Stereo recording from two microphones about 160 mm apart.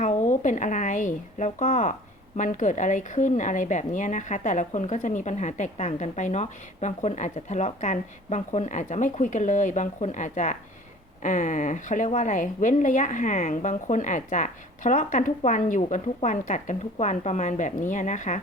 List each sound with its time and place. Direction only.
0.0 s speech: 50° left (ahead or behind)